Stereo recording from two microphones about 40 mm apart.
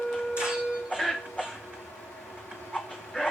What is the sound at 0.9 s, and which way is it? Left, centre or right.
Music, centre.